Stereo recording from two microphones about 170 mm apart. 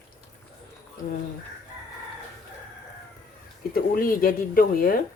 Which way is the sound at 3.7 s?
55° left (ahead or behind).